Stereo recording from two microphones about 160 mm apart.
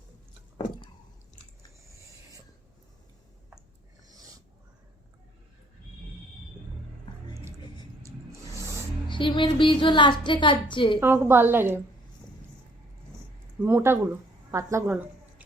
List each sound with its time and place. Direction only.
8.5 s a sound: 20° right (ahead or behind)
9.0 s a woman's voice: 30° left (ahead or behind)
11.0 s a woman's voice: 15° right (ahead or behind)
13.6 s a woman's voice: 15° right (ahead or behind)